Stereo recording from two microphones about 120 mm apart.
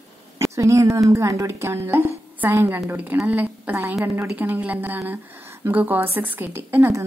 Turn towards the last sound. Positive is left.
turn(degrees=-20)  # may be behind; listen again after turning